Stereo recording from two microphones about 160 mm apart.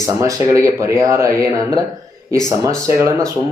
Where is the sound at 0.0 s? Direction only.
20° right (ahead or behind).